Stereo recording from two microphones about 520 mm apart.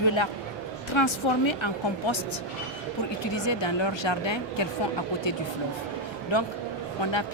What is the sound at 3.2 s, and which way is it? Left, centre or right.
Speech, left.